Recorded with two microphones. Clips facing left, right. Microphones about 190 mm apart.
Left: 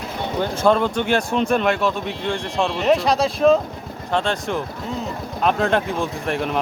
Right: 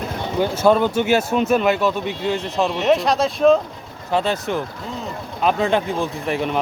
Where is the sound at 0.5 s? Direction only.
5° right (ahead or behind).